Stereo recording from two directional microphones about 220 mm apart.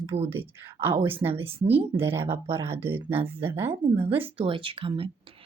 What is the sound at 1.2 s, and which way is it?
Speech, 25° right (ahead or behind).